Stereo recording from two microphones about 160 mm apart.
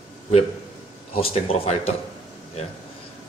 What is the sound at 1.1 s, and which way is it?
Speech, 35° left (ahead or behind).